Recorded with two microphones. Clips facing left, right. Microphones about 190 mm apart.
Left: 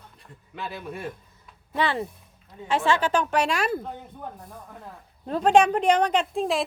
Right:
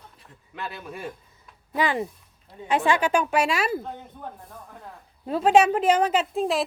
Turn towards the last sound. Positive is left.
turn(degrees=0)  # may be behind; listen again after turning